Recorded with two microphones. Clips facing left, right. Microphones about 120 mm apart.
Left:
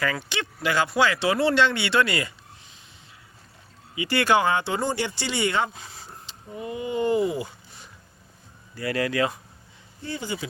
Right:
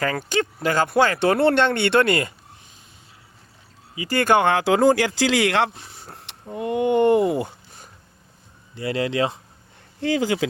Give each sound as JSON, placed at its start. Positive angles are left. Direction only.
{"t": 0.0, "sound": "speech", "side_deg": -45}
{"t": 3.9, "sound": "speech", "side_deg": -40}
{"t": 6.1, "sound": "speech", "side_deg": -70}
{"t": 8.7, "sound": "speech", "side_deg": -25}
{"t": 10.0, "sound": "speech", "side_deg": -90}